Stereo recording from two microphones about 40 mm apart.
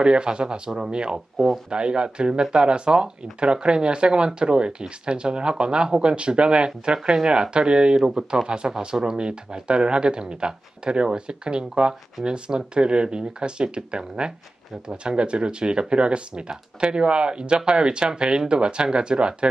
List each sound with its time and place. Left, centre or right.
0.0 s speech: right